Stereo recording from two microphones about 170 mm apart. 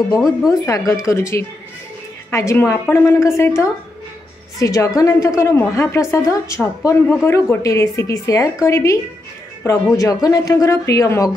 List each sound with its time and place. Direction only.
0.5 s a woman's voice: 20° left (ahead or behind)